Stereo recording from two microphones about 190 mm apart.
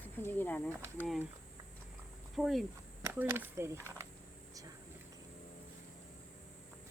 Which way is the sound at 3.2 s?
10° right (ahead or behind).